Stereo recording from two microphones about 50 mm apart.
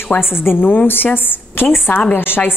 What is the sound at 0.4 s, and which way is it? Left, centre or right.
A woman's voice, left.